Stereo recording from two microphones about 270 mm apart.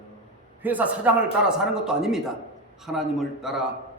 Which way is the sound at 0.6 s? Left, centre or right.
Centre.